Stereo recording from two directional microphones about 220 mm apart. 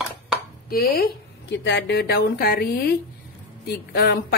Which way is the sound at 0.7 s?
45° left (ahead or behind).